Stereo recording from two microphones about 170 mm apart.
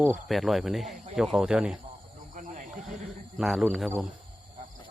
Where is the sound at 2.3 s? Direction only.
50° right (ahead or behind).